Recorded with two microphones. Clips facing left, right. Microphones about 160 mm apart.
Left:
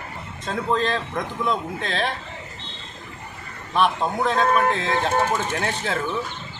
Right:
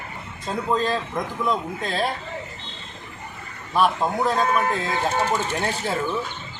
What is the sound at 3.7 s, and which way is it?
Speech, 5° right (ahead or behind).